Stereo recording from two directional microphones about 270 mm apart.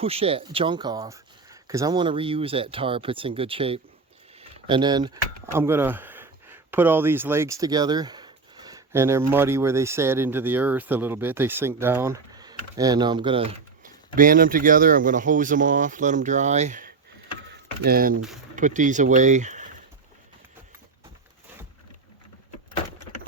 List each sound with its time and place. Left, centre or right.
0.0 s speech: right
17.5 s a sound: right
18.5 s speech: right